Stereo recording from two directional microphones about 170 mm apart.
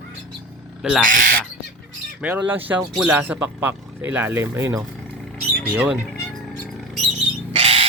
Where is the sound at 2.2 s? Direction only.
5° right (ahead or behind).